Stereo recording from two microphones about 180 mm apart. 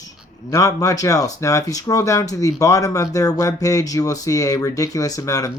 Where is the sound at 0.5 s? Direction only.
20° left (ahead or behind).